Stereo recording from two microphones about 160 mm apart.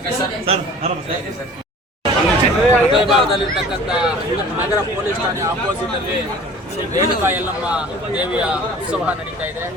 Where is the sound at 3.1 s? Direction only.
Centre (ahead or behind).